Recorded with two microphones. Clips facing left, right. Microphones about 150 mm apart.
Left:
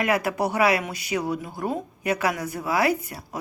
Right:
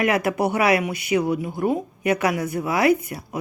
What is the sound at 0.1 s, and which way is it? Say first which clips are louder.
A woman's voice: right 2 dB; 20° right (ahead or behind).